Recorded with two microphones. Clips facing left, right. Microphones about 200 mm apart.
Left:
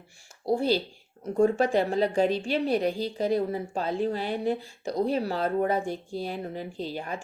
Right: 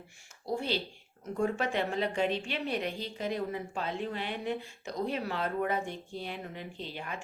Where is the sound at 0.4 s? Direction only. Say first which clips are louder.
Left 8 dB; 35° left (ahead or behind).